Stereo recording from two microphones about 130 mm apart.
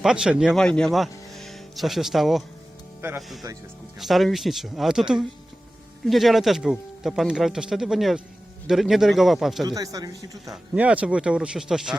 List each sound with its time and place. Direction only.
0.0 s speech: 5° right (ahead or behind)
9.6 s speech: 25° right (ahead or behind)
10.5 s speech: 10° right (ahead or behind)